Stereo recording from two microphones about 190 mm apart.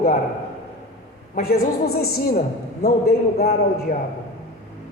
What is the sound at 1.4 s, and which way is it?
A man's voice, 55° left (ahead or behind).